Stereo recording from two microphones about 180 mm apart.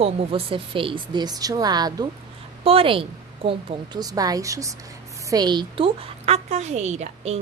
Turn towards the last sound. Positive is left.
turn(degrees=-35)  # may be behind; listen again after turning